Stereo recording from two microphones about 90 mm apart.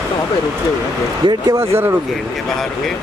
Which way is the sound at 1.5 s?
30° right (ahead or behind).